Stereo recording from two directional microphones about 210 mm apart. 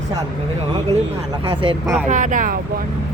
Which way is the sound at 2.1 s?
35° right (ahead or behind).